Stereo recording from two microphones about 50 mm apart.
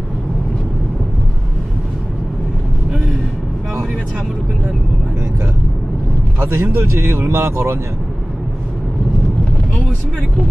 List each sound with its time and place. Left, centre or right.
6.4 s speech: right